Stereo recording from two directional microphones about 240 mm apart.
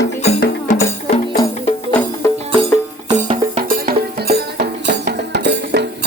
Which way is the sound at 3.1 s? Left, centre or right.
Right.